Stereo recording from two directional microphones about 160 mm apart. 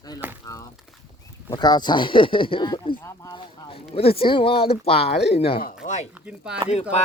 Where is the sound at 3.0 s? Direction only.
20° left (ahead or behind).